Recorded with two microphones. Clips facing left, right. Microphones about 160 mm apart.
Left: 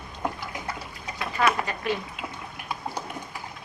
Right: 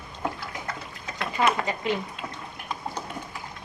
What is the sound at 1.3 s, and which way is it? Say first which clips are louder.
Speech: even; 20° right (ahead or behind).